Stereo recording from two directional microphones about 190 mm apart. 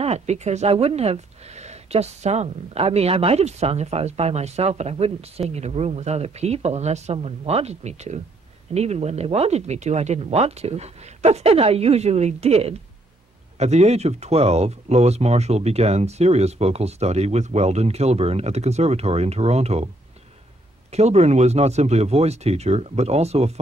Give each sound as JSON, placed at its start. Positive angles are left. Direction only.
{"t": 0.0, "sound": "speech", "side_deg": -35}
{"t": 20.9, "sound": "speech", "side_deg": -35}